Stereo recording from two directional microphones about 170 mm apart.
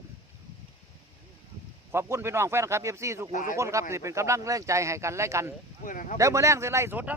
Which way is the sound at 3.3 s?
50° left (ahead or behind).